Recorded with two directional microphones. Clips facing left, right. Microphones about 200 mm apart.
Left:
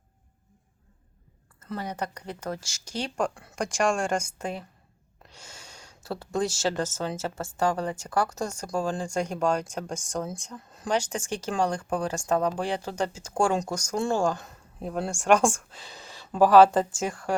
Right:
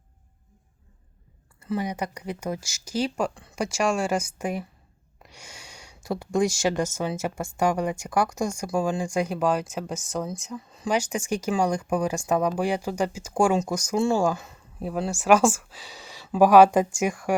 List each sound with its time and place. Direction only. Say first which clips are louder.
1.5 s speech: right 5 dB; 10° right (ahead or behind)